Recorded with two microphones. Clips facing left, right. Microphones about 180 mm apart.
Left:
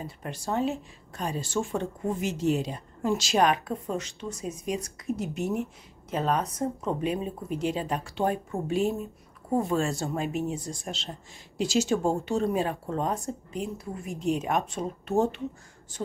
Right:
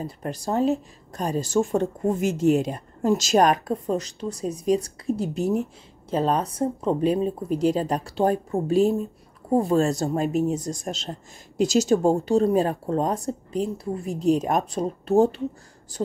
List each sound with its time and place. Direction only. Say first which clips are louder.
0.0 s speech: right 6 dB; 40° right (ahead or behind)